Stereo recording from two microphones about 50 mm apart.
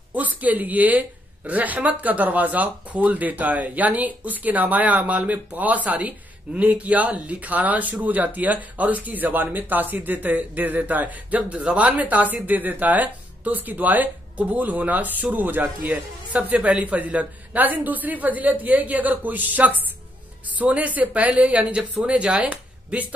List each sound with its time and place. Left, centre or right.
0.1 s a woman's voice: right